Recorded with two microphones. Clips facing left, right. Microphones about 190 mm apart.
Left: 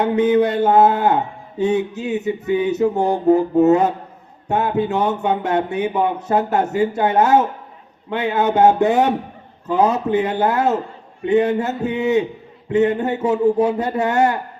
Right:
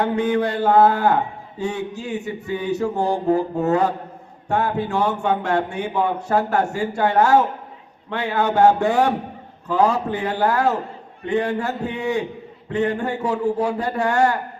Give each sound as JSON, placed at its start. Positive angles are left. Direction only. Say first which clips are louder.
{"t": 0.0, "sound": "speech", "louder": "left 5 dB", "side_deg": 20}